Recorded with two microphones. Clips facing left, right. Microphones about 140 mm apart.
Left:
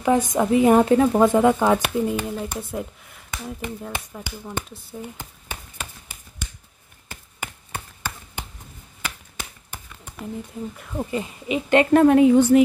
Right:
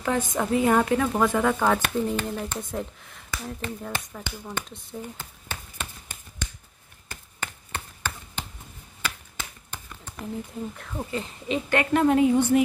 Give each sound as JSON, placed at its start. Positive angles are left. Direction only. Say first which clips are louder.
{"t": 0.0, "sound": "speech", "louder": "left 6 dB", "side_deg": 15}
{"t": 7.3, "sound": "a sound", "louder": "left 1 dB", "side_deg": 10}
{"t": 11.1, "sound": "speech", "louder": "left 1 dB", "side_deg": 10}
{"t": 12.1, "sound": "a woman's voice", "louder": "left 6 dB", "side_deg": 75}